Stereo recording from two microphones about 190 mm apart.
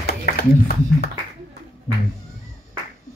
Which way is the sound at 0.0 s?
55° left (ahead or behind).